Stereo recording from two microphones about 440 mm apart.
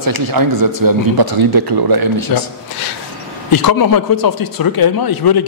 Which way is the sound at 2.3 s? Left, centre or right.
Left.